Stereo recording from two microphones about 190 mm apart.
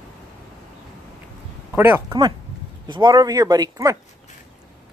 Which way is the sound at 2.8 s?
25° right (ahead or behind).